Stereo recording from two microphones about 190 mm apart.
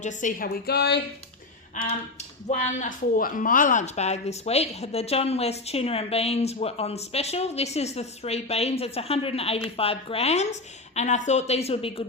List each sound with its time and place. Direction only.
0.0 s a woman's voice: 40° left (ahead or behind); by 1.0 s 60° left (ahead or behind)
1.8 s speech: 40° left (ahead or behind)